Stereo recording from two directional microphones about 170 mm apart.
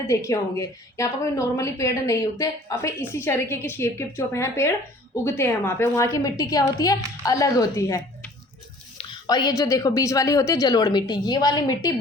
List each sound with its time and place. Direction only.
0.1 s a woman's voice: 15° left (ahead or behind)